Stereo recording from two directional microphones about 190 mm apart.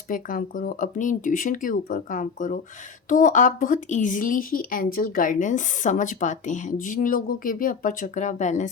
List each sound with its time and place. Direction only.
0.1 s speech: 45° left (ahead or behind)